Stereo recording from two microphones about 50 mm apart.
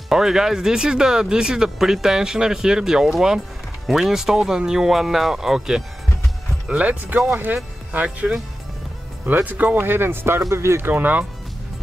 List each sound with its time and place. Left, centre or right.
0.1 s speech: centre
6.7 s speech: right
10.5 s speech: right
10.8 s speech: right